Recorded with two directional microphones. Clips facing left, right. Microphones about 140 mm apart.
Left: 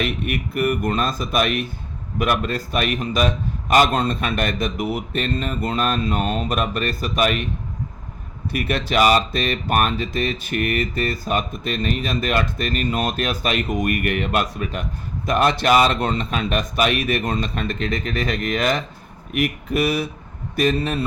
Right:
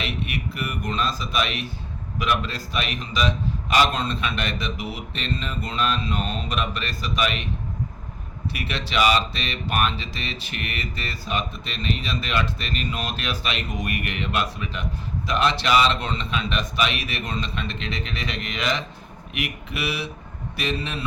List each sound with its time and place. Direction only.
0.0 s speech: 50° left (ahead or behind)
8.4 s speech: 50° left (ahead or behind)